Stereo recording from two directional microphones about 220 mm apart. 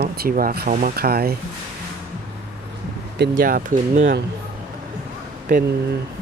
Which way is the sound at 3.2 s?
40° right (ahead or behind).